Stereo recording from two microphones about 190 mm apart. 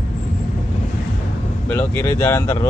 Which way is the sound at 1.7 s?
15° left (ahead or behind).